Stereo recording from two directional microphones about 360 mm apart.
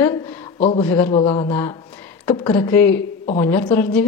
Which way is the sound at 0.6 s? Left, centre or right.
Centre.